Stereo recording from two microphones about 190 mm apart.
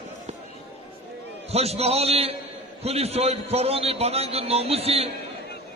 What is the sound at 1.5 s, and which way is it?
A man's voice, 35° right (ahead or behind).